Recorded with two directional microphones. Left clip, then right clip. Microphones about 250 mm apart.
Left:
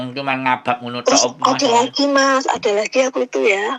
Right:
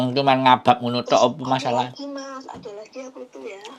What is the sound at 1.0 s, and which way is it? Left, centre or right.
Speech, left.